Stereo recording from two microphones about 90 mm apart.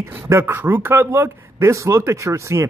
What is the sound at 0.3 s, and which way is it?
Speech, 25° right (ahead or behind).